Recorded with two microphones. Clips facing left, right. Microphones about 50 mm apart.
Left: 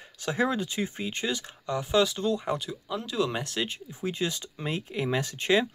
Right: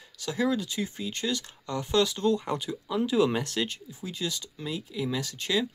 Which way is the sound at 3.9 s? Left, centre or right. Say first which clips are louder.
Left 4 dB; left.